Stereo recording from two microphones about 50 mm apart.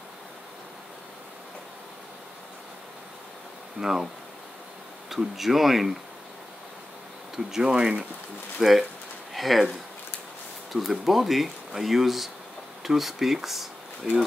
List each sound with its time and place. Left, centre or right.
3.8 s speech: centre
5.1 s speech: centre
7.5 s speech: centre
8.5 s speech: centre
10.7 s speech: centre